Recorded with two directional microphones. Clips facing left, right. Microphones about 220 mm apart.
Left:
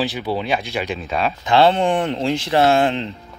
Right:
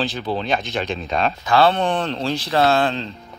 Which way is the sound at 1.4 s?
20° left (ahead or behind).